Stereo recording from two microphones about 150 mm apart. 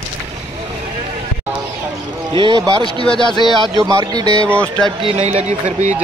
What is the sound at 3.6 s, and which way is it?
Speech, 25° right (ahead or behind).